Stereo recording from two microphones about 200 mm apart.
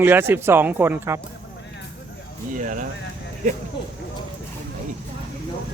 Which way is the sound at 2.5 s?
40° right (ahead or behind).